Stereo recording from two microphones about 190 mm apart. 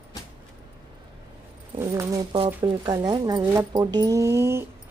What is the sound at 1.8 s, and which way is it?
Speech, 15° right (ahead or behind).